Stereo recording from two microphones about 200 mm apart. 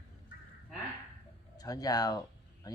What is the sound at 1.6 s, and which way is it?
Speech, 20° left (ahead or behind).